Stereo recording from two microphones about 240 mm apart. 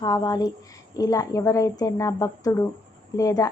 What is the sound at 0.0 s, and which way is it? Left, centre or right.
A woman's voice, centre.